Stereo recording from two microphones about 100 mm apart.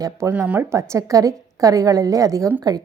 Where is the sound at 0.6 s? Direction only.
30° right (ahead or behind).